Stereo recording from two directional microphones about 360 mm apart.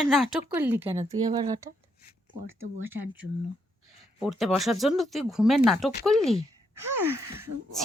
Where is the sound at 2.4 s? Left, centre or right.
Right.